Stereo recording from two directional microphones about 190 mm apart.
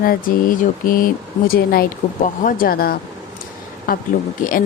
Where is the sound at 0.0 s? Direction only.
50° left (ahead or behind).